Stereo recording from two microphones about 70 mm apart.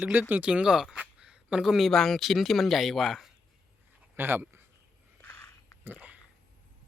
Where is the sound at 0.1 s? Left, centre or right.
Right; by 1.9 s centre.